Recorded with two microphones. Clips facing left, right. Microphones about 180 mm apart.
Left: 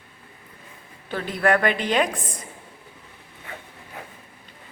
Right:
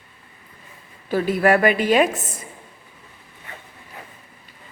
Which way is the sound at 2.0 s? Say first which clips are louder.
Right 5 dB; 25° right (ahead or behind).